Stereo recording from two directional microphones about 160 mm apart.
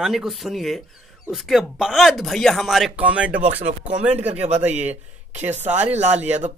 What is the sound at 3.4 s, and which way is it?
Speech, 45° right (ahead or behind).